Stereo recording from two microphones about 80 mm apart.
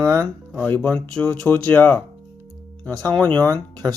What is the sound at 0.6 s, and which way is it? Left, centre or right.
Speech, left.